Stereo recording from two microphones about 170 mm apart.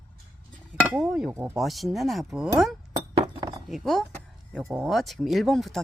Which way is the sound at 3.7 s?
Centre (ahead or behind).